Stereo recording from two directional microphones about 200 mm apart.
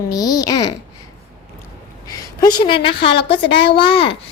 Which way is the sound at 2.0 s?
20° left (ahead or behind).